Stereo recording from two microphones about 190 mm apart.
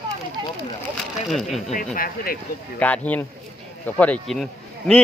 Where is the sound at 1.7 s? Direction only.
50° left (ahead or behind).